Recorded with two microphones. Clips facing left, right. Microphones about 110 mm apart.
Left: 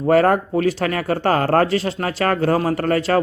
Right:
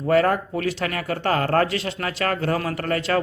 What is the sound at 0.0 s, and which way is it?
Speech, 40° left (ahead or behind).